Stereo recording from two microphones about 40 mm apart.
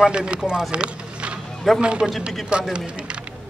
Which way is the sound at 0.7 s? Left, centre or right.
Right.